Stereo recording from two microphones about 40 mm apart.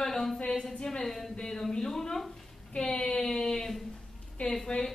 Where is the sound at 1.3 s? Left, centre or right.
Centre.